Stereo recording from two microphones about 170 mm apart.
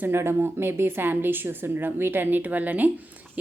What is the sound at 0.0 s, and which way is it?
A woman's voice, 15° right (ahead or behind).